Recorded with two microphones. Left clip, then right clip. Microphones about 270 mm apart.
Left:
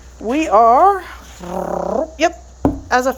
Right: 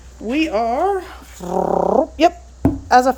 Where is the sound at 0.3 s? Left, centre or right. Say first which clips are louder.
Left 7 dB; centre.